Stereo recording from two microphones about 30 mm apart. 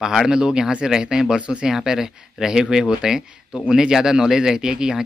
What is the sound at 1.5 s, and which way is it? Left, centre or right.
Speech, centre.